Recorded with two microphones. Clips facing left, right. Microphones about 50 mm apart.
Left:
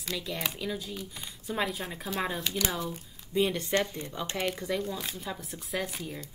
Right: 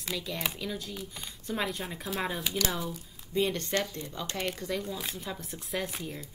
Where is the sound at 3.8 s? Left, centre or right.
Left.